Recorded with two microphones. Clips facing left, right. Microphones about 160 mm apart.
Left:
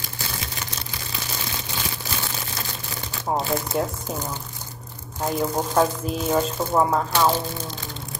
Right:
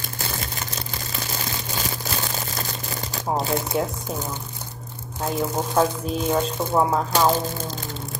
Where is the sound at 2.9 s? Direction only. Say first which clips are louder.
Right 3 dB; 40° right (ahead or behind).